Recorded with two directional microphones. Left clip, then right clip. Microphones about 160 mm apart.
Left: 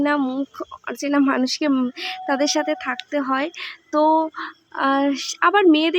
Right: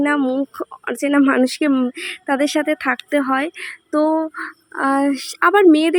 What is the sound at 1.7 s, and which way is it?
Speech, 10° right (ahead or behind).